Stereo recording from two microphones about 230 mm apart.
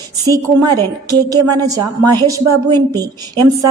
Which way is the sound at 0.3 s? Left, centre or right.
Centre.